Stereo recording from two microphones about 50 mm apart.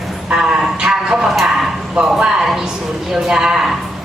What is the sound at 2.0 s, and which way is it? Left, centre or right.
Speech, centre.